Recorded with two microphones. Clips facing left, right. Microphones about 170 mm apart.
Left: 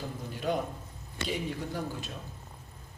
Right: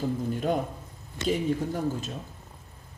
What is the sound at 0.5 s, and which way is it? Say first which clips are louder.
Speech: right 2 dB; 45° right (ahead or behind).